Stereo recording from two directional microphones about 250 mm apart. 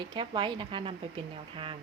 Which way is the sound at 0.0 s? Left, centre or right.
Centre.